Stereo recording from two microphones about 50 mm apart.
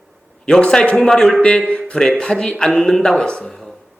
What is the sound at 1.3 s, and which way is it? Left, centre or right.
A man's voice, left.